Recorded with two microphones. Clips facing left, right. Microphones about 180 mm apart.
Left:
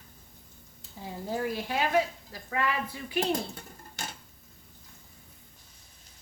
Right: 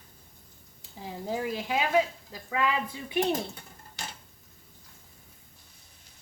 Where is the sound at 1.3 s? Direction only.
15° right (ahead or behind).